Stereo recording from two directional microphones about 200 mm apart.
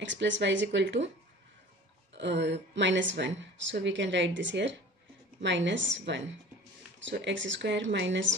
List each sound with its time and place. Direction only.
0.0 s speech: 65° right (ahead or behind)
2.1 s speech: 60° right (ahead or behind)